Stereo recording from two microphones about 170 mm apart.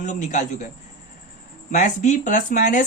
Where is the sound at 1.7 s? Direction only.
45° left (ahead or behind).